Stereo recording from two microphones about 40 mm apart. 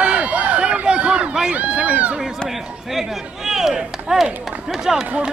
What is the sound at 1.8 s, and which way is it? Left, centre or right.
Run, right.